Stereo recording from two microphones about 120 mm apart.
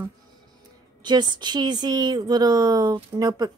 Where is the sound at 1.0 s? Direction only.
40° right (ahead or behind).